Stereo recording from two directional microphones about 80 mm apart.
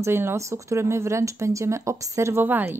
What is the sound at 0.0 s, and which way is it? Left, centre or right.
Speech, right.